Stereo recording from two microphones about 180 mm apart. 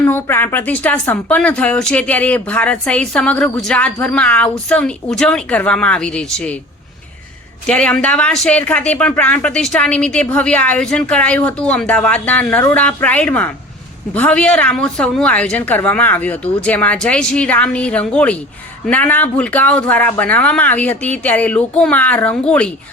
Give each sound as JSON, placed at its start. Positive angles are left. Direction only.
{"t": 0.0, "sound": "a woman's voice", "side_deg": 10}
{"t": 7.7, "sound": "a woman's voice", "side_deg": 5}